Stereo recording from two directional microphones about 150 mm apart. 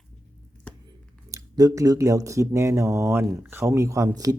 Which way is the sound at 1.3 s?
20° right (ahead or behind).